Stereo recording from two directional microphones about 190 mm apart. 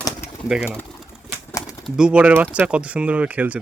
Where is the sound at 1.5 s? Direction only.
20° left (ahead or behind).